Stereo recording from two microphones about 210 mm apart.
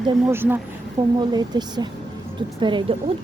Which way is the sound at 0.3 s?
10° right (ahead or behind).